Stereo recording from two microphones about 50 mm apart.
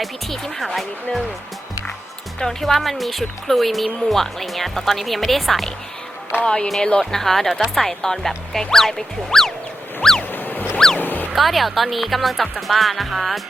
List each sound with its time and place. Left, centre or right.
0.0 s speech: centre
2.4 s speech: centre
6.4 s music: centre
7.0 s speech: centre
8.5 s music: centre
10.3 s music: left
11.3 s speech: centre